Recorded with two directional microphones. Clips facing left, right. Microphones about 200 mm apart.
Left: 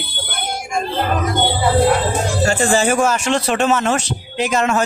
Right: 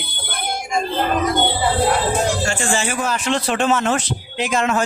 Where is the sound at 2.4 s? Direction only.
40° left (ahead or behind).